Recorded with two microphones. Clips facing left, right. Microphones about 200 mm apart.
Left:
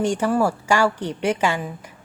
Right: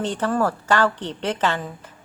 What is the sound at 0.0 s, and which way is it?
A woman's voice, 10° left (ahead or behind).